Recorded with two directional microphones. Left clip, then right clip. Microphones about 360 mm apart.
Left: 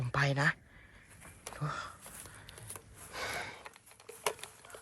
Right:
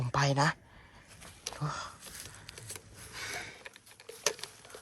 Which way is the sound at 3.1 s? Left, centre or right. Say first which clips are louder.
Left 2 dB; centre.